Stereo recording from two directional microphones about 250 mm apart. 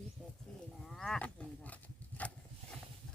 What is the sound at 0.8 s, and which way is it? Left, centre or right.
Speech, centre.